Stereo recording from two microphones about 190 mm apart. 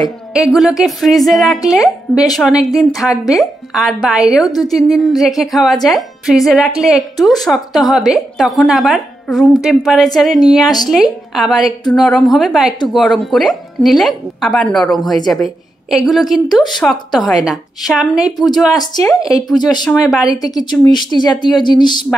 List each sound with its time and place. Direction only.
0.3 s speech: centre (ahead or behind)
4.5 s speech: 20° left (ahead or behind)
4.9 s a woman's voice: centre (ahead or behind)
18.2 s speech: 20° left (ahead or behind)
19.8 s speech: centre (ahead or behind)
20.8 s speech: 20° left (ahead or behind)